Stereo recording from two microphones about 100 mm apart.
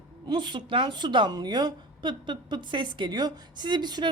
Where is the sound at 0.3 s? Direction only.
50° right (ahead or behind).